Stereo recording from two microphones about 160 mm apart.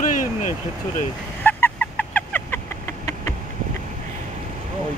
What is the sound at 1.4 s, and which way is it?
Fowl, 10° left (ahead or behind).